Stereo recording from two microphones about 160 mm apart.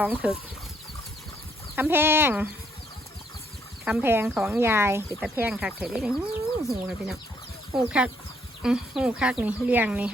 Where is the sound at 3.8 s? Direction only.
10° right (ahead or behind).